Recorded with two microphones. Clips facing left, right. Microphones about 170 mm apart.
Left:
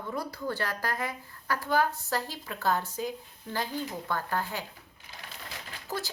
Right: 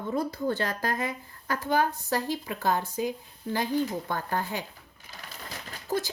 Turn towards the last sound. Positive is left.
turn(degrees=-20)  # may be behind; listen again after turning